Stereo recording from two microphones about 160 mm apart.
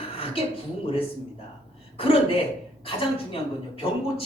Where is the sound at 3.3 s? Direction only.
35° left (ahead or behind).